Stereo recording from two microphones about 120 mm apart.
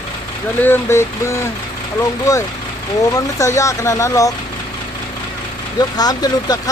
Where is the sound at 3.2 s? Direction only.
25° left (ahead or behind).